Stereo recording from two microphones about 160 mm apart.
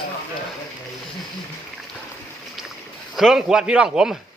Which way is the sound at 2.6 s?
Centre (ahead or behind).